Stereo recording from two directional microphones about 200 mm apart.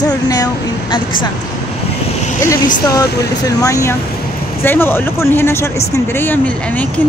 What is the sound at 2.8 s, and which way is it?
Speech, 20° left (ahead or behind).